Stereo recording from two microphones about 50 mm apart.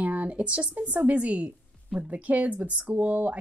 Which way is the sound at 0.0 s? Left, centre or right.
Right.